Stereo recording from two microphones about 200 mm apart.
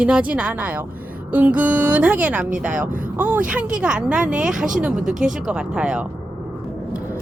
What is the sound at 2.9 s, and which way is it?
Speech, 45° right (ahead or behind).